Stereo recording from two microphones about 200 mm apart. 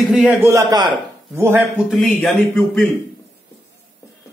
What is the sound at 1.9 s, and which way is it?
Speech, centre (ahead or behind).